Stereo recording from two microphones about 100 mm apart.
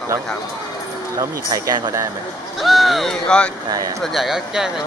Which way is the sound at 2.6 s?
Centre (ahead or behind).